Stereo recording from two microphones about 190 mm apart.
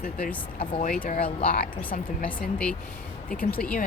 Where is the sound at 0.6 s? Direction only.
30° left (ahead or behind).